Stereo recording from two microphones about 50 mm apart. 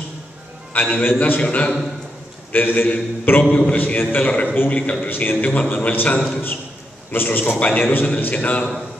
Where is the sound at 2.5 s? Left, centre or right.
Left.